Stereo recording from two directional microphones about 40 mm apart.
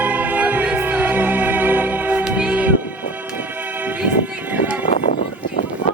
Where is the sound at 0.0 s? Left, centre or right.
Right.